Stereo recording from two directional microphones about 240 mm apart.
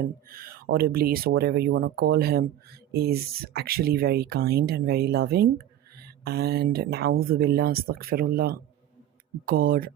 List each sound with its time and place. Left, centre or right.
0.0 s speech: right